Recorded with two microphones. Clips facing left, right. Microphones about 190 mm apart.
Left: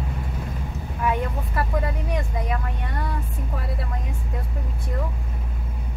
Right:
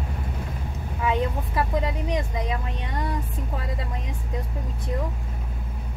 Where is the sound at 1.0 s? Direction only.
15° right (ahead or behind).